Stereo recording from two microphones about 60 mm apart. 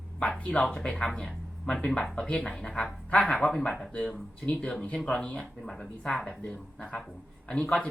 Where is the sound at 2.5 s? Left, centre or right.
Centre.